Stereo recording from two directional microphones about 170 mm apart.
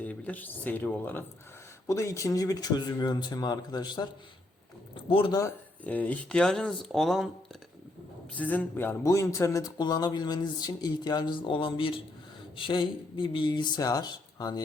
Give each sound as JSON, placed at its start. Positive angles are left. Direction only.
{"t": 0.0, "sound": "speech", "side_deg": 10}
{"t": 5.0, "sound": "speech", "side_deg": 30}
{"t": 5.8, "sound": "speech", "side_deg": 10}
{"t": 8.4, "sound": "speech", "side_deg": 10}